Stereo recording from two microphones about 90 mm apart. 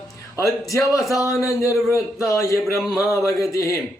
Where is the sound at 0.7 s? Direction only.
35° left (ahead or behind).